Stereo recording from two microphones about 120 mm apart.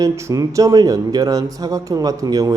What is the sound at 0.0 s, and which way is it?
Speech, 25° right (ahead or behind).